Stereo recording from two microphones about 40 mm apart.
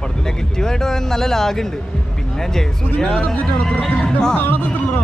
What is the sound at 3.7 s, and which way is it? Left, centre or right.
Speech, left.